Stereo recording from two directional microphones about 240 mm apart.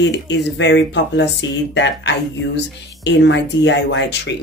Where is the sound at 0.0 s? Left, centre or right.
Left.